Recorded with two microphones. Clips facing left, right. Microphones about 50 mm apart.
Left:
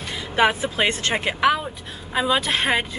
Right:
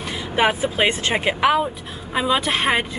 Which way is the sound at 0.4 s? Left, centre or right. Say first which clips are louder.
Right 1 dB; centre.